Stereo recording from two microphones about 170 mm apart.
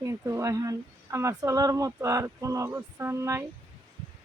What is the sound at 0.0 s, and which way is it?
Speech, 15° right (ahead or behind).